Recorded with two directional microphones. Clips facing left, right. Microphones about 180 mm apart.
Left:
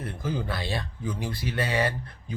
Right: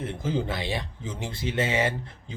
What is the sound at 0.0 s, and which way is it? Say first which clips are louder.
Speech: right 3 dB; 20° right (ahead or behind).